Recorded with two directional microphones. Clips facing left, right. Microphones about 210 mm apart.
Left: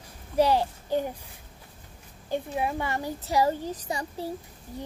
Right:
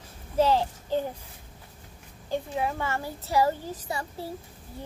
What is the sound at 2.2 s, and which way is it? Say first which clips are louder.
A child's voice: even; 15° left (ahead or behind).